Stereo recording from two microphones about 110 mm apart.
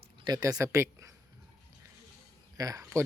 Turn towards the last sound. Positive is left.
turn(degrees=-25)  # may be behind; listen again after turning